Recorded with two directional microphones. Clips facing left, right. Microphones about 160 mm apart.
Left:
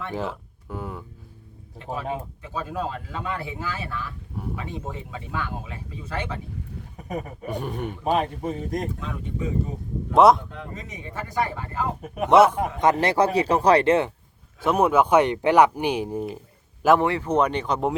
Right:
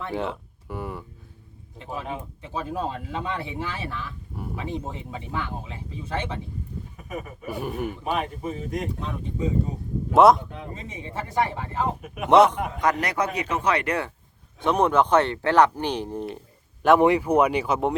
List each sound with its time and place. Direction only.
0.1 s speech: centre (ahead or behind)
2.4 s speech: 20° right (ahead or behind)
6.9 s speech: 35° left (ahead or behind)
7.4 s speech: 5° right (ahead or behind)
8.0 s speech: 35° left (ahead or behind)
9.0 s speech: 30° right (ahead or behind)
10.2 s speech: centre (ahead or behind)
10.8 s speech: 25° right (ahead or behind)
12.0 s speech: 35° left (ahead or behind)
12.3 s speech: 5° left (ahead or behind)
12.8 s speech: 25° left (ahead or behind)
14.6 s speech: 5° left (ahead or behind)
17.0 s speech: 15° right (ahead or behind)